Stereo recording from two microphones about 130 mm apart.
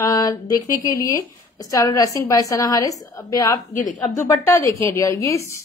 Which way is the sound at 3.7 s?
80° left.